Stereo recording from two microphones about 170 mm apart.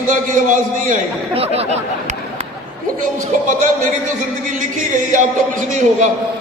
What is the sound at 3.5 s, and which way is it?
A man's voice, 50° right (ahead or behind).